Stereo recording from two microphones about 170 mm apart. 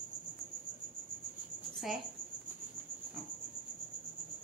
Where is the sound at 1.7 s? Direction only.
Centre (ahead or behind).